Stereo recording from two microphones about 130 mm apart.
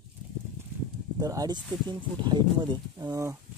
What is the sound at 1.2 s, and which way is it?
Speech, 30° right (ahead or behind).